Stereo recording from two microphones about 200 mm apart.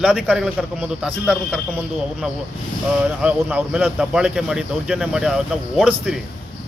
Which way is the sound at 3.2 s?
5° right (ahead or behind).